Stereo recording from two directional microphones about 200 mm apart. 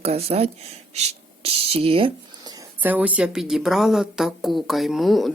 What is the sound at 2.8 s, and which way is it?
Speech, 10° right (ahead or behind).